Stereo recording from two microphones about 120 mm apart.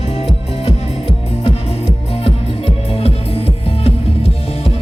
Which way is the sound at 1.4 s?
55° left (ahead or behind).